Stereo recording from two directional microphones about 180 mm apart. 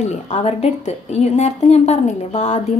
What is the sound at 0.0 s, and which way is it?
A woman's voice, 40° left (ahead or behind).